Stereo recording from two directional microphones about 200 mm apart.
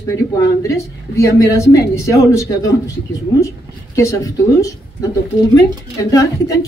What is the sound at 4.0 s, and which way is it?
Speech, 15° left (ahead or behind).